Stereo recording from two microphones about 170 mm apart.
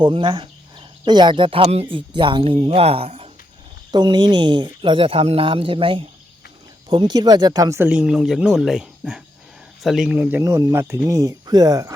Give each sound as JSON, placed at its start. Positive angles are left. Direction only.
{"t": 0.0, "sound": "speech", "side_deg": -30}
{"t": 7.9, "sound": "speech", "side_deg": -5}